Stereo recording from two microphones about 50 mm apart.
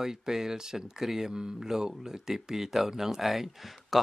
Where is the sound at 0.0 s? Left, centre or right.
Centre.